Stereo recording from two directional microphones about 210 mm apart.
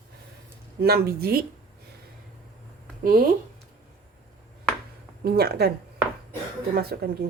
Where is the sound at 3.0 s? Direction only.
40° right (ahead or behind).